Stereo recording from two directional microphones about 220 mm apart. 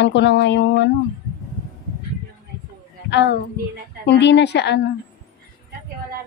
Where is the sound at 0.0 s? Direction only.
55° left (ahead or behind).